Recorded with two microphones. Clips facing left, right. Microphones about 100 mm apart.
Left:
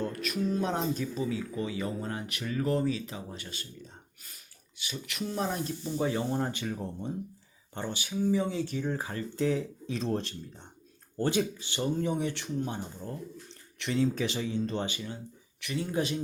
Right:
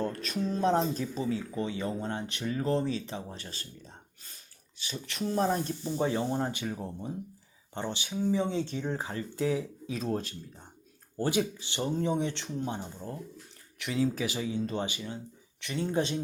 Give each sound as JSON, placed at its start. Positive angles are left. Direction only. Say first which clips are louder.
{"t": 0.0, "sound": "speech", "louder": "even", "side_deg": -35}
{"t": 4.8, "sound": "speech", "louder": "right 1 dB", "side_deg": -35}
{"t": 6.0, "sound": "speech", "louder": "even", "side_deg": -25}
{"t": 11.8, "sound": "speech", "louder": "even", "side_deg": -25}
{"t": 13.7, "sound": "speech", "louder": "left 1 dB", "side_deg": -5}
{"t": 15.6, "sound": "speech", "louder": "right 1 dB", "side_deg": -30}